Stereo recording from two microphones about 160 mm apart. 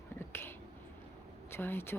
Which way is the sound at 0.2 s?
15° left (ahead or behind).